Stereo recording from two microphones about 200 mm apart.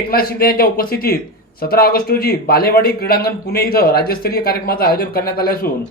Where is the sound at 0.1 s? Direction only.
50° left (ahead or behind).